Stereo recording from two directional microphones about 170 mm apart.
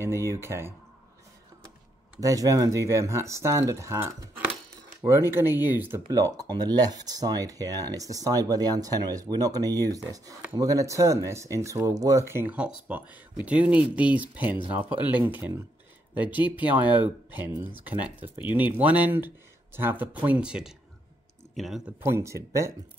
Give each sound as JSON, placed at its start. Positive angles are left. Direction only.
{"t": 0.0, "sound": "speech", "side_deg": -15}
{"t": 2.1, "sound": "speech", "side_deg": -20}
{"t": 5.3, "sound": "speech", "side_deg": -15}
{"t": 6.4, "sound": "speech", "side_deg": -25}
{"t": 22.0, "sound": "speech", "side_deg": -15}